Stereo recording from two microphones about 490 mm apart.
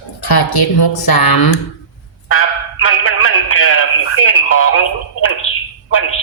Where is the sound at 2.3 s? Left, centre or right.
Left.